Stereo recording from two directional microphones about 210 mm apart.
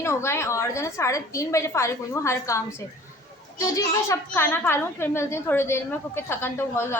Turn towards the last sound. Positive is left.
turn(degrees=10)  # may be behind; listen again after turning